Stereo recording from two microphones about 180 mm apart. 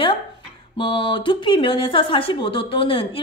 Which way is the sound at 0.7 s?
25° left (ahead or behind).